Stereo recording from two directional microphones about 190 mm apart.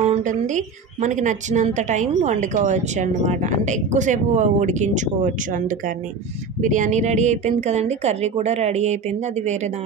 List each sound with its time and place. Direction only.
0.0 s a woman's voice: 40° right (ahead or behind)